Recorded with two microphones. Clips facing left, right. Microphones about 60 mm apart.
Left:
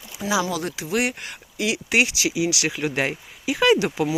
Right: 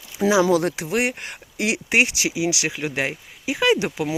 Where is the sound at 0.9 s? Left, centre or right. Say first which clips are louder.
Right 1 dB; right.